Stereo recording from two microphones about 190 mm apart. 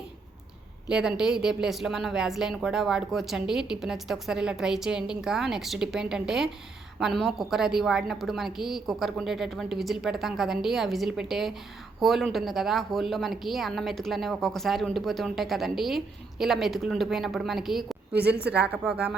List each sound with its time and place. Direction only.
0.9 s a woman's voice: 5° right (ahead or behind)
18.1 s a woman's voice: 60° right (ahead or behind)
18.5 s a woman's voice: 5° right (ahead or behind)